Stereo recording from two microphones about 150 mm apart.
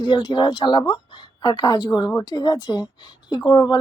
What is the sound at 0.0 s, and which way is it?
A woman's voice, 30° left (ahead or behind).